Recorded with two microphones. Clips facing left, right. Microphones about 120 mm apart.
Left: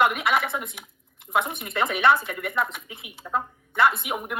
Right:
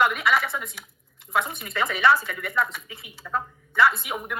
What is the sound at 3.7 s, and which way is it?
Speech, 55° left (ahead or behind).